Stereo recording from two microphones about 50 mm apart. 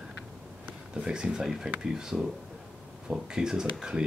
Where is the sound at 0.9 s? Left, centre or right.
Centre.